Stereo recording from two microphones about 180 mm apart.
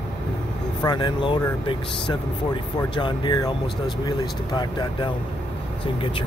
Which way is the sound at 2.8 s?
25° left (ahead or behind).